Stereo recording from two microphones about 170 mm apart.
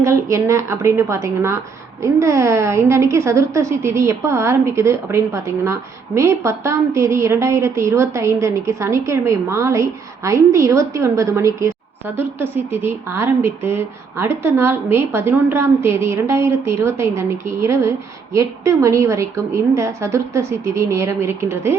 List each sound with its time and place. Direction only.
0.0 s a woman's voice: 15° right (ahead or behind)